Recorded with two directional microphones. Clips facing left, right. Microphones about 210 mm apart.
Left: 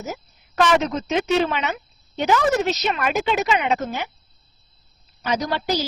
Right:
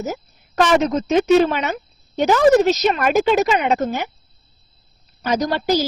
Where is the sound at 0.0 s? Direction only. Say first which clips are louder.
Right 5 dB; 40° right (ahead or behind).